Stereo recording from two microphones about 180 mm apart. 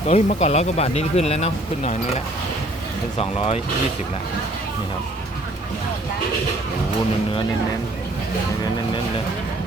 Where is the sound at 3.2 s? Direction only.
35° left (ahead or behind).